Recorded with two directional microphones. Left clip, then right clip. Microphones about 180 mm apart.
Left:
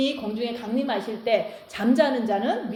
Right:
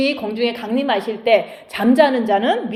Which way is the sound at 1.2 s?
25° right (ahead or behind).